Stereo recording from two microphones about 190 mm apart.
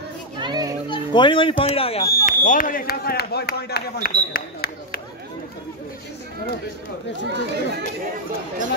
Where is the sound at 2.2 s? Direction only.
45° left (ahead or behind).